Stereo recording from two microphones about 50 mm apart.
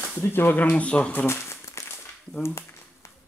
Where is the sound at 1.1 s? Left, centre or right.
Left.